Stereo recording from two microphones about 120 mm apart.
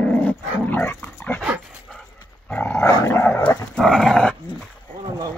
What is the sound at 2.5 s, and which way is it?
Dog, 20° left (ahead or behind).